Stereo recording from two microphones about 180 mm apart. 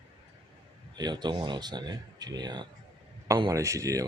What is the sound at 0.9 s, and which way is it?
Speech, 25° right (ahead or behind).